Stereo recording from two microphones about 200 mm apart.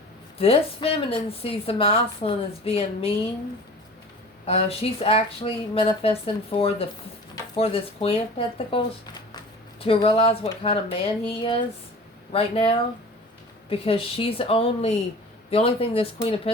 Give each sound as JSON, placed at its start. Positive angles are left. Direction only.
{"t": 0.3, "sound": "a woman's voice", "side_deg": 30}
{"t": 4.4, "sound": "a woman's voice", "side_deg": 30}
{"t": 9.8, "sound": "a woman's voice", "side_deg": 30}